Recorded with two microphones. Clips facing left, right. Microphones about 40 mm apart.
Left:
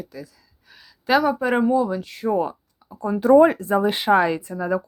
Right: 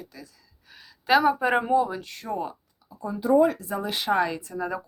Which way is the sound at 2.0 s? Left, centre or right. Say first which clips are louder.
Left 11 dB; centre.